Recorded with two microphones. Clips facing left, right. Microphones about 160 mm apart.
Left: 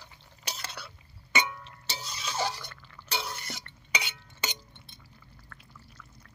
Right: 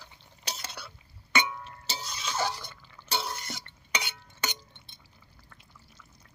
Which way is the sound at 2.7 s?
15° right (ahead or behind).